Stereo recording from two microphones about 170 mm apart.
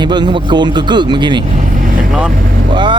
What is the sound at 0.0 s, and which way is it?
Speech, 25° right (ahead or behind).